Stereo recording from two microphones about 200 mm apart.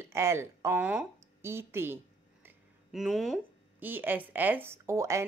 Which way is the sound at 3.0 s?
Centre (ahead or behind).